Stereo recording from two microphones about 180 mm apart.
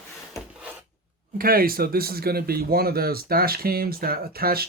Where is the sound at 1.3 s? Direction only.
55° right (ahead or behind).